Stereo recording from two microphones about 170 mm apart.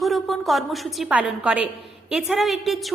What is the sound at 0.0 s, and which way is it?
A woman's voice, centre (ahead or behind).